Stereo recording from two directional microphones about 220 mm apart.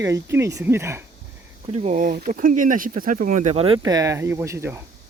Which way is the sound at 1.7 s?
30° right (ahead or behind).